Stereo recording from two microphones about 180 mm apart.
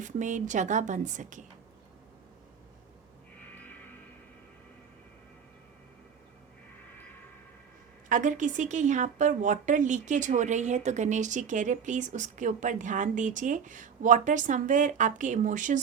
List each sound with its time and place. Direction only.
0.0 s a woman's voice: 45° right (ahead or behind)
8.1 s a woman's voice: 45° right (ahead or behind)